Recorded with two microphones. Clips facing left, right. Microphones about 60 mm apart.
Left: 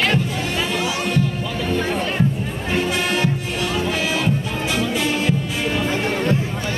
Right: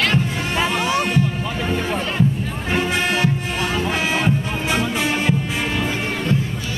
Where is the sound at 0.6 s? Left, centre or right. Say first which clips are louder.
Right 5 dB; right.